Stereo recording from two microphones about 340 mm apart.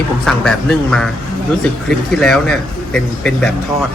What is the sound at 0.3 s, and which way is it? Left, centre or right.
Speech, centre.